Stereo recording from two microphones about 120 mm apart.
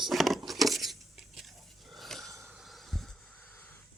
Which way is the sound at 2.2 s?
25° right (ahead or behind).